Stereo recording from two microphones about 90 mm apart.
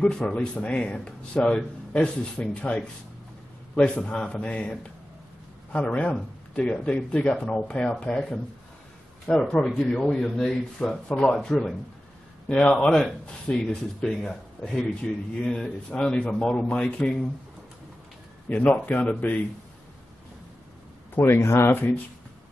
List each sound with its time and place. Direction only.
0.0 s speech: 10° left (ahead or behind)
9.4 s a man's voice: 5° left (ahead or behind)
18.5 s speech: 15° left (ahead or behind)
21.1 s speech: 25° left (ahead or behind)